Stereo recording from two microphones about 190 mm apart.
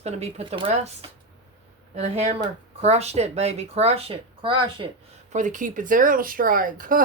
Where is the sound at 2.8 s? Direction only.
35° right (ahead or behind).